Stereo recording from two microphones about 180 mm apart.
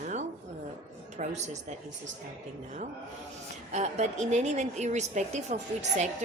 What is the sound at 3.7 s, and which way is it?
A woman's voice, 40° right (ahead or behind).